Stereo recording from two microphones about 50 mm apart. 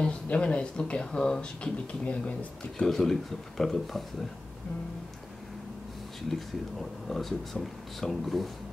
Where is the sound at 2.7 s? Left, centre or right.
Centre.